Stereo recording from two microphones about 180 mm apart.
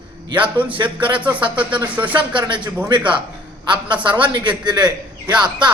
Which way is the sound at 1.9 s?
10° right (ahead or behind).